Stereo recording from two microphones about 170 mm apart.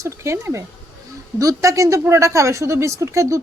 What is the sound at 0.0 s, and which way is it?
A woman's voice, 15° right (ahead or behind).